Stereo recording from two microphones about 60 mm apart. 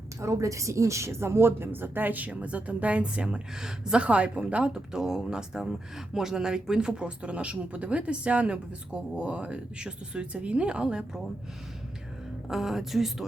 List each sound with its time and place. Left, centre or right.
0.2 s a woman's voice: right; by 11.2 s centre
12.5 s a woman's voice: centre